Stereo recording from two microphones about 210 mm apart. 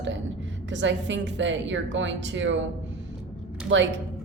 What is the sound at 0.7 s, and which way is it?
A woman's voice, 60° right (ahead or behind).